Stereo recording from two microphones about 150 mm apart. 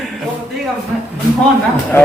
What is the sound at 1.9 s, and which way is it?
Speech, 15° left (ahead or behind).